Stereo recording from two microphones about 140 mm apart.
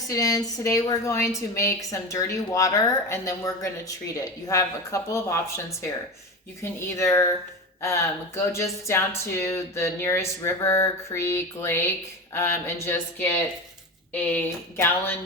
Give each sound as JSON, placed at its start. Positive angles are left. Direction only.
{"t": 0.1, "sound": "a woman's voice", "side_deg": 25}
{"t": 6.6, "sound": "a woman's voice", "side_deg": 20}